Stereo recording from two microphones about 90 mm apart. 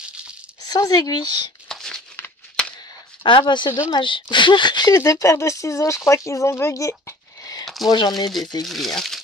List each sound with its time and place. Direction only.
0.7 s speech: 45° left (ahead or behind)
1.7 s crumpling: 5° left (ahead or behind)
3.3 s a woman's voice: 65° left (ahead or behind)
4.9 s speech: 35° left (ahead or behind)
7.6 s a sound: centre (ahead or behind)
8.6 s speech: centre (ahead or behind)